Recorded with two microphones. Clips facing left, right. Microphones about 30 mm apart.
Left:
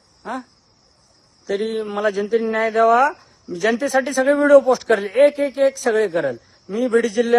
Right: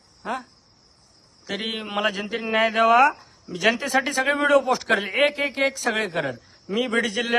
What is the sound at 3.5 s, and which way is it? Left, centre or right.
Speech, right.